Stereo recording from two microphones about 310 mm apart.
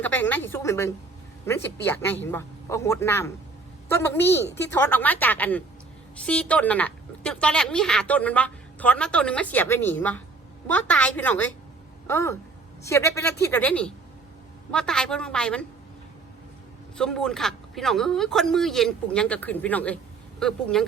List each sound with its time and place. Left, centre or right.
0.0 s a woman's voice: centre
17.0 s a woman's voice: centre